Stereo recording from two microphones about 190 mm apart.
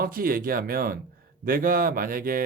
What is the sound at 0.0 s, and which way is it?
Speech, 50° right (ahead or behind).